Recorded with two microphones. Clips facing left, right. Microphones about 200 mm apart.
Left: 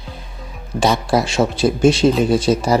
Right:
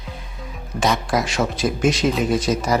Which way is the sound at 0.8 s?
30° left (ahead or behind).